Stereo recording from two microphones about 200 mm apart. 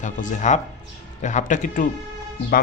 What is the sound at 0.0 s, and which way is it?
Speech, 40° left (ahead or behind).